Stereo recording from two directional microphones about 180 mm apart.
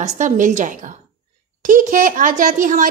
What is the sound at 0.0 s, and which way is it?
Speech, 45° right (ahead or behind).